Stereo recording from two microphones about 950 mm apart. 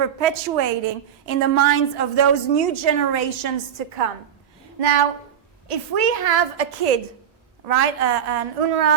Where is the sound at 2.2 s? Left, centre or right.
Right.